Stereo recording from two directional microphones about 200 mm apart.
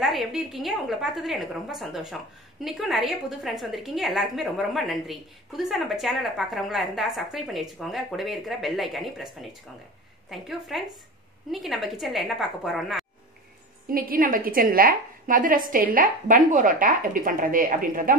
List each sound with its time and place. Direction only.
0.0 s a woman's voice: centre (ahead or behind)
13.9 s a woman's voice: 45° right (ahead or behind)